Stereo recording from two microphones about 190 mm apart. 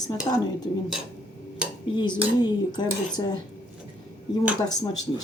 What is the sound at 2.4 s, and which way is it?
Speech, 20° left (ahead or behind).